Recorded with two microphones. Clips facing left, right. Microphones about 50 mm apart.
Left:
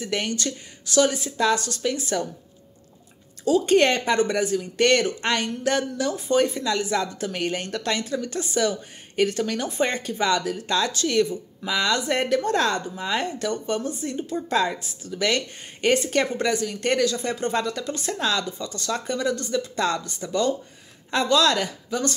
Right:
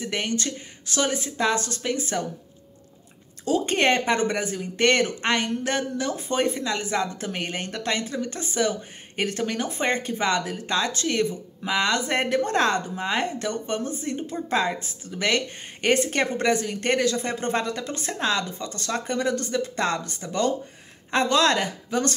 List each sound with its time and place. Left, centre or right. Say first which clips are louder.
0.0 s speech: left 1 dB; right
3.4 s speech: left 3 dB; right